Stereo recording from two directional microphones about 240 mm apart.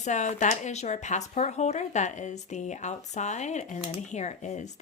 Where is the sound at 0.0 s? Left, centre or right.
Left.